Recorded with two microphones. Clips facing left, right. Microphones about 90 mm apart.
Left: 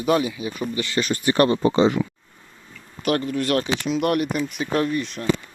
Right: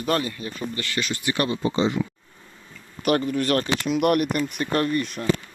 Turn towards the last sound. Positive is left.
turn(degrees=0)  # may be behind; listen again after turning